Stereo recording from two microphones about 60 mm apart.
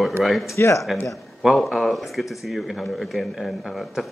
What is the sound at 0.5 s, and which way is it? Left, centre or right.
Speech, left.